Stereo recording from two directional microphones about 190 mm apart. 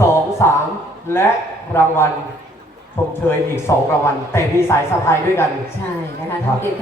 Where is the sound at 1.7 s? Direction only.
10° left (ahead or behind).